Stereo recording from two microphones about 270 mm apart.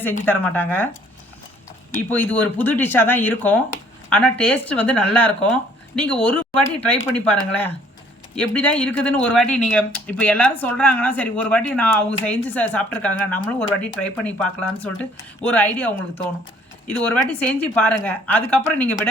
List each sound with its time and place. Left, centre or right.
0.0 s speech: centre
1.9 s speech: centre
8.4 s speech: centre